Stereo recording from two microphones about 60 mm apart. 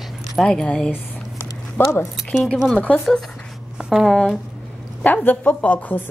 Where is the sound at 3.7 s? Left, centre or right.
Centre.